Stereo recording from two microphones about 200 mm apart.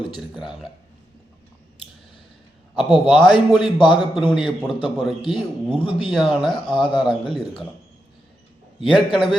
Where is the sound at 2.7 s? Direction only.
25° left (ahead or behind).